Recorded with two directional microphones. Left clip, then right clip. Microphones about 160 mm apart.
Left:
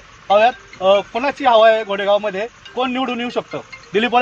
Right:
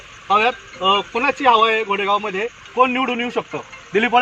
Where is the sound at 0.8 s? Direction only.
20° left (ahead or behind).